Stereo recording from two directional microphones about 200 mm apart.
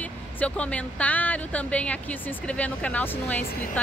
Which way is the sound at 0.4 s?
5° left (ahead or behind).